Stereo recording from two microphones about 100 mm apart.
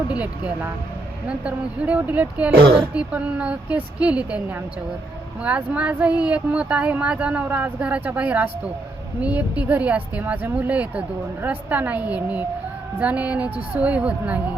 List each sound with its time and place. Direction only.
0.1 s speech: 15° right (ahead or behind)